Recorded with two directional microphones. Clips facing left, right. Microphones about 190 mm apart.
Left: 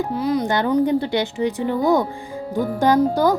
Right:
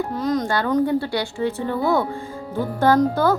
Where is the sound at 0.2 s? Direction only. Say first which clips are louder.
Left 2 dB; 10° left (ahead or behind).